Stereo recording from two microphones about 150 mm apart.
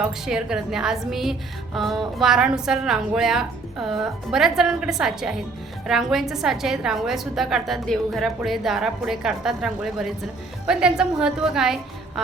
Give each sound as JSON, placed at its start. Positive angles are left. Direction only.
{"t": 0.0, "sound": "a woman's voice", "side_deg": -5}